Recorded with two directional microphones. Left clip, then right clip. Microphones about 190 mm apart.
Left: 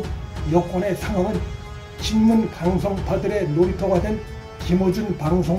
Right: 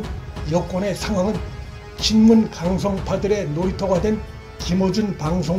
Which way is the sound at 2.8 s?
35° right (ahead or behind).